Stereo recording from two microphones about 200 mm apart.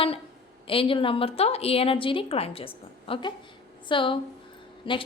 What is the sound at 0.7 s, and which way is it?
A woman's voice, 25° left (ahead or behind).